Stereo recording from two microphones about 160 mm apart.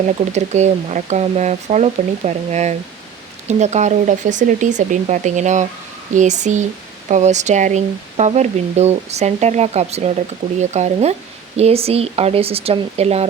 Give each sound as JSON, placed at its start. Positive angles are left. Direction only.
{"t": 0.3, "sound": "speech", "side_deg": -45}